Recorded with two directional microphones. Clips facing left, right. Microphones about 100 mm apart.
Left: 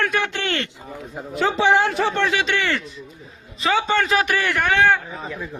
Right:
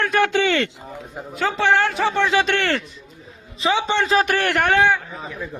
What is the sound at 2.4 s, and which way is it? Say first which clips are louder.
Speech: right 2 dB; 55° right (ahead or behind).